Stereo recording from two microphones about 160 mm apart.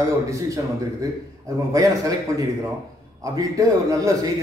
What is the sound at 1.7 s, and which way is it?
A man's voice, 20° right (ahead or behind).